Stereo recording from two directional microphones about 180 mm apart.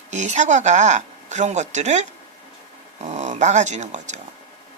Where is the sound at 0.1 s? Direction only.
40° right (ahead or behind).